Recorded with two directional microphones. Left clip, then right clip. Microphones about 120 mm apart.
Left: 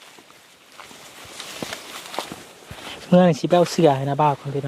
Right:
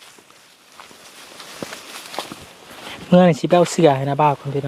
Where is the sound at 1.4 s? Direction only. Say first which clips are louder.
Left 3 dB; 55° left (ahead or behind).